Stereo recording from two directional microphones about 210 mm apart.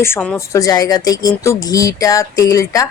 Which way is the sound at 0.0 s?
10° left (ahead or behind).